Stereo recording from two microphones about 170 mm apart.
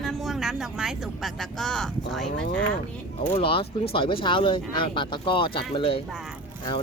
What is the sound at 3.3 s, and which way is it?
Speech, 35° left (ahead or behind).